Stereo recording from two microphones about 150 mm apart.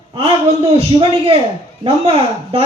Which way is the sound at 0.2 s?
40° right (ahead or behind).